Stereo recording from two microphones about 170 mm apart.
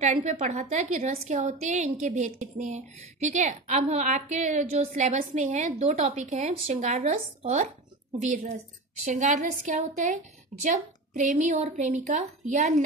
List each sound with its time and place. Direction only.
0.0 s a woman's voice: 45° right (ahead or behind)
9.0 s a woman's voice: 45° right (ahead or behind)